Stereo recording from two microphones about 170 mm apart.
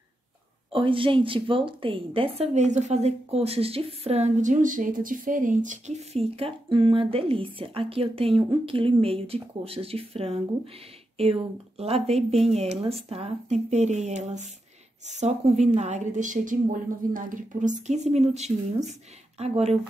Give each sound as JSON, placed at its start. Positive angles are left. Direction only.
{"t": 0.7, "sound": "a woman's voice", "side_deg": -30}